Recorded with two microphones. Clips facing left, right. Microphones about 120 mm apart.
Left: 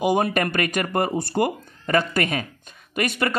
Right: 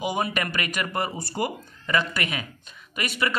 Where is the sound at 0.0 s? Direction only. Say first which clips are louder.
Left 6 dB; 50° left (ahead or behind).